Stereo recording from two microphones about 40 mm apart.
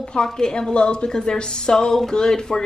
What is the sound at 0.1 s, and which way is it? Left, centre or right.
A woman's voice, centre.